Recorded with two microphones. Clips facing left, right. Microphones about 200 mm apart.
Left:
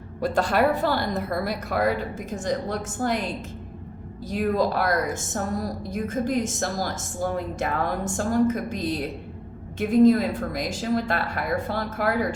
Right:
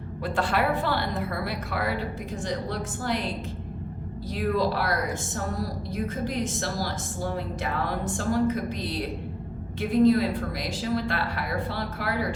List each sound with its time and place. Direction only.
0.2 s a woman's voice: 40° left (ahead or behind)
4.3 s a woman's voice: 45° left (ahead or behind)